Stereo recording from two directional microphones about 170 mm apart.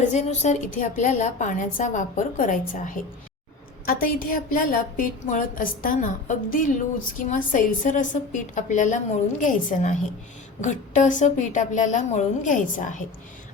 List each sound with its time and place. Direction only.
0.1 s a woman's voice: 45° left (ahead or behind)